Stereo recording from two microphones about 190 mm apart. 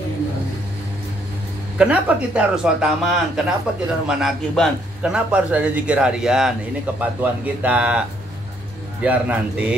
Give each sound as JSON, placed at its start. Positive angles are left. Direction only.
{"t": 1.8, "sound": "a man's voice", "side_deg": -5}
{"t": 9.0, "sound": "speech", "side_deg": -5}